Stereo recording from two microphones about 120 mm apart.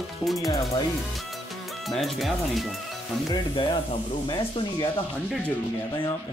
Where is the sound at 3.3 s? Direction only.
40° left (ahead or behind).